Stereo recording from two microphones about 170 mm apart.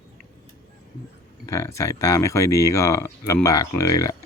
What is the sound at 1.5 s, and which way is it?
Speech, 15° left (ahead or behind).